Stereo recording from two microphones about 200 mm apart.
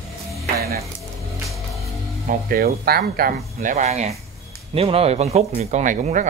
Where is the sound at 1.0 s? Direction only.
Centre (ahead or behind).